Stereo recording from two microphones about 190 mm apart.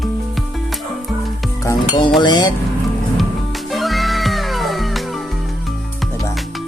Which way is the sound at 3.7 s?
Centre (ahead or behind).